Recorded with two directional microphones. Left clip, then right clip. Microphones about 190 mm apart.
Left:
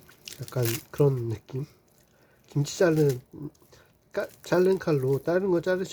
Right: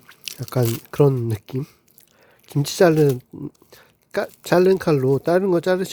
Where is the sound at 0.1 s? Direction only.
45° right (ahead or behind).